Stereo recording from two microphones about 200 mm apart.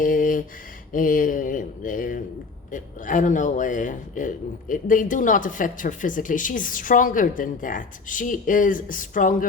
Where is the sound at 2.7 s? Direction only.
40° left (ahead or behind).